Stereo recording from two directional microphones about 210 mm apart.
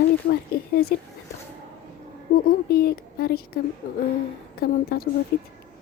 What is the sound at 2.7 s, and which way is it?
Speech, 45° left (ahead or behind).